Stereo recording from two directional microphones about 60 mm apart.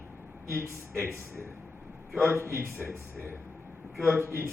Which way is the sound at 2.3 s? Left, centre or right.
Right.